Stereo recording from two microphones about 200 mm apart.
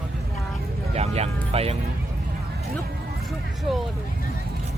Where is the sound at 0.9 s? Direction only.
30° right (ahead or behind).